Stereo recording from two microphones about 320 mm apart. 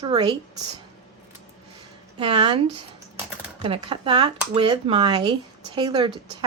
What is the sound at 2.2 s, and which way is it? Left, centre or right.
Speech, centre.